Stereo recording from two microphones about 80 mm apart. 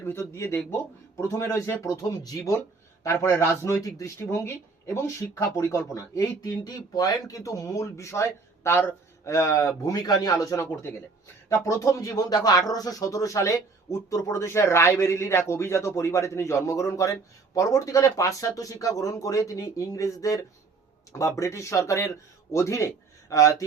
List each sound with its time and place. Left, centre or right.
0.0 s speech: left
2.0 s speech: left
10.7 s speech: left